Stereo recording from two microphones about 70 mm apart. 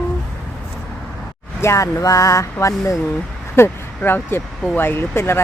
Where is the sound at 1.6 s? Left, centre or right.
Left.